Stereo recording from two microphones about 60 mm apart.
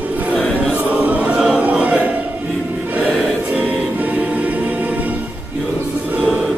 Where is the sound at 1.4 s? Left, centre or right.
Centre.